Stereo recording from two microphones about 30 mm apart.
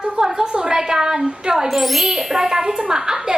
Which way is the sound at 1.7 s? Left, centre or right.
Centre.